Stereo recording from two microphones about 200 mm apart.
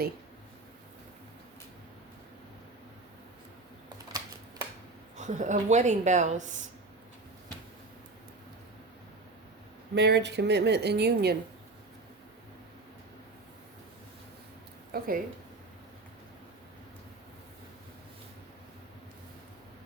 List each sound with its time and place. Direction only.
5.1 s a woman's voice: 35° right (ahead or behind)
9.9 s speech: 55° right (ahead or behind)
14.9 s speech: 45° right (ahead or behind)